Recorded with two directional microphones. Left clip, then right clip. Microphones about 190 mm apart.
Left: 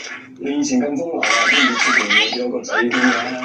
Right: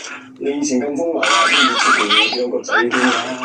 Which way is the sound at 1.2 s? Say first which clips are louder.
Right 1 dB; 20° right (ahead or behind).